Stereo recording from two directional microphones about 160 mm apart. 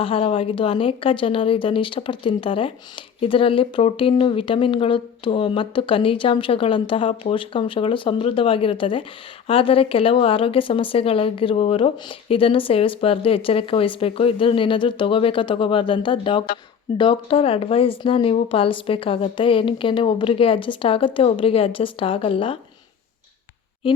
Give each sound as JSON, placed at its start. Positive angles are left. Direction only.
{"t": 0.0, "sound": "speech", "side_deg": 35}
{"t": 23.8, "sound": "speech", "side_deg": 30}